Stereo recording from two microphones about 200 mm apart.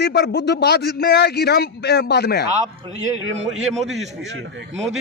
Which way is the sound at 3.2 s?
75° right (ahead or behind).